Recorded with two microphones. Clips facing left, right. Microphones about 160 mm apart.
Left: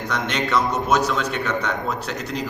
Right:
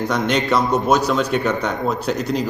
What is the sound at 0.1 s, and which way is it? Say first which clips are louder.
A man's voice: right 2 dB; 35° right (ahead or behind).